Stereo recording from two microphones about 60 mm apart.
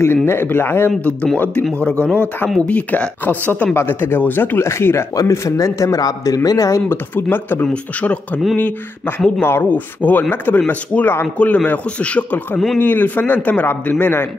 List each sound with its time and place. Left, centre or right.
0.0 s a man's voice: left
1.0 s speech: left
3.7 s a man's voice: left
4.6 s speech: left
5.1 s a man's voice: left
6.9 s a man's voice: left
7.6 s a man's voice: left
12.7 s a man's voice: left